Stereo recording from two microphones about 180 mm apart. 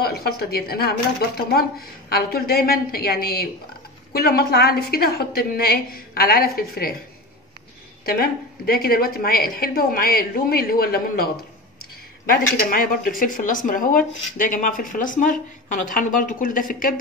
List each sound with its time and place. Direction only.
0.0 s a woman's voice: 60° left (ahead or behind)
8.0 s a woman's voice: 55° left (ahead or behind)
12.4 s speech: 50° left (ahead or behind)